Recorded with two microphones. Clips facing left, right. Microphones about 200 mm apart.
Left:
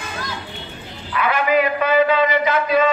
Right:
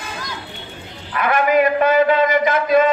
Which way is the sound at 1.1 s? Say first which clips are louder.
Right 2 dB; 45° right (ahead or behind).